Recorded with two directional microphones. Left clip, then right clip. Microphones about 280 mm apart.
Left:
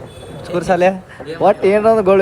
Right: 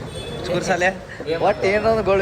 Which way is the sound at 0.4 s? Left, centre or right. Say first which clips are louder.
Left 6 dB; centre.